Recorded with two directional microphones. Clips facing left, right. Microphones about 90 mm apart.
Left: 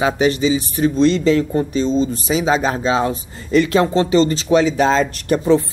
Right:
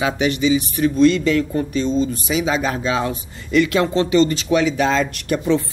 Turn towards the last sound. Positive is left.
turn(degrees=35)  # may be behind; listen again after turning